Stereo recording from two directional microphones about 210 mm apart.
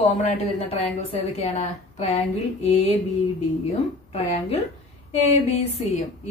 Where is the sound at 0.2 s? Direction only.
30° left (ahead or behind).